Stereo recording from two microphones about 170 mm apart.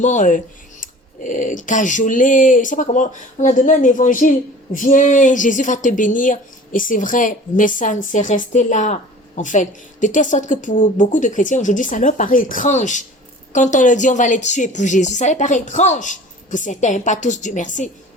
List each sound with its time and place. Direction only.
0.0 s speech: 45° left (ahead or behind)